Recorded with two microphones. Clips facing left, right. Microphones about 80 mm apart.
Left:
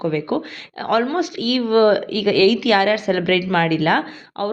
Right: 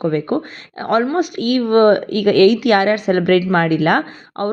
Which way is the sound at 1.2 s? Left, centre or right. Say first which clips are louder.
Right 3 dB; right.